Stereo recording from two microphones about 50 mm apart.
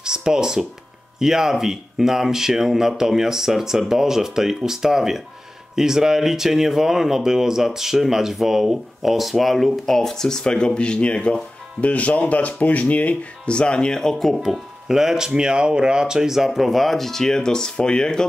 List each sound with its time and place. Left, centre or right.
0.0 s speech: centre
14.3 s speech: centre